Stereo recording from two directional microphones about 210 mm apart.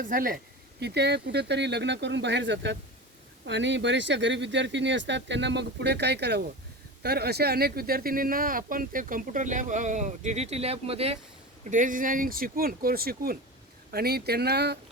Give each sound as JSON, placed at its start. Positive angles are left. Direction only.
{"t": 0.0, "sound": "speech", "side_deg": -40}